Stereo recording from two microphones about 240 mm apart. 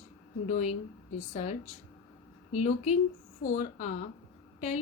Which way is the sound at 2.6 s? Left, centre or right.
Left.